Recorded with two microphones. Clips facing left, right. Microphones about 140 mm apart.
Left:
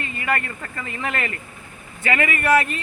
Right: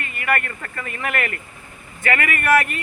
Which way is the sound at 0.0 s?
25° left (ahead or behind).